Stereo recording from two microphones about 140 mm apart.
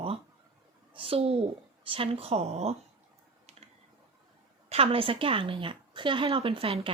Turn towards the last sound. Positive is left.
turn(degrees=-45)  # may be behind; listen again after turning